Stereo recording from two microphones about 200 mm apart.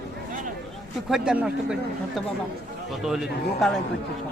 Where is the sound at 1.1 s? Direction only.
5° right (ahead or behind).